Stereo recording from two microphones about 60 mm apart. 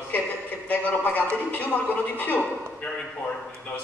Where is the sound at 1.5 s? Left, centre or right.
Left.